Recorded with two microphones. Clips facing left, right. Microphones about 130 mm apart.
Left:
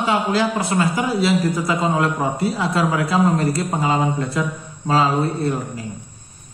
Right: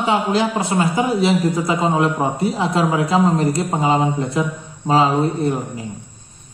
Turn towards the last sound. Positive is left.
turn(degrees=-20)  # may be behind; listen again after turning